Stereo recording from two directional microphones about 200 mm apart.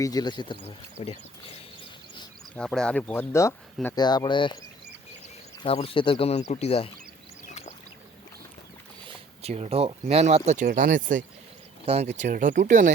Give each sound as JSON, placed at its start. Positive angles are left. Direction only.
{"t": 0.0, "sound": "speech", "side_deg": 20}
{"t": 2.6, "sound": "speech", "side_deg": 5}
{"t": 5.6, "sound": "speech", "side_deg": 30}
{"t": 9.0, "sound": "speech", "side_deg": -30}